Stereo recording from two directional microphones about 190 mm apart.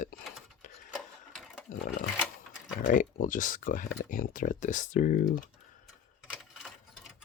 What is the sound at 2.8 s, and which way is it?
Speech, 45° left (ahead or behind).